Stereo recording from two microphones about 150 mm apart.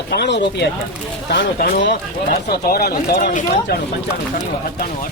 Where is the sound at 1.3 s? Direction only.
90° left; by 3.8 s 75° left (ahead or behind).